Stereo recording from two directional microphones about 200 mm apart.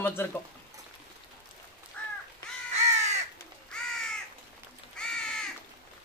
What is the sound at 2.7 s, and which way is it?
Crow, 35° right (ahead or behind).